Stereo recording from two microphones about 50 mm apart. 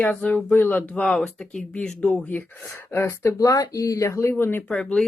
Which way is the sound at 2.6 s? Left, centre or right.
Left.